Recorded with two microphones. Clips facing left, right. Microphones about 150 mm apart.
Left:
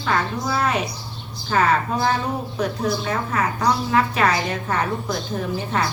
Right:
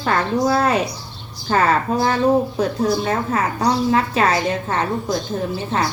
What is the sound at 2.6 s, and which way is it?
Speech, 40° right (ahead or behind).